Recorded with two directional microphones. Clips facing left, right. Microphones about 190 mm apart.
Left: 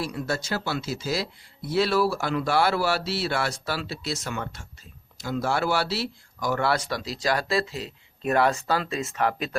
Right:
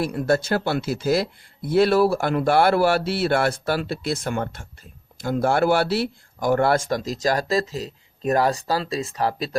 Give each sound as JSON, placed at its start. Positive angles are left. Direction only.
{"t": 0.0, "sound": "speech", "side_deg": -55}